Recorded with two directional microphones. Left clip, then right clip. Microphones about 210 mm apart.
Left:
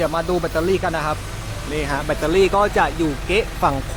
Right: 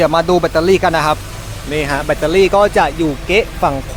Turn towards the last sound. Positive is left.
turn(degrees=-10)  # may be behind; listen again after turning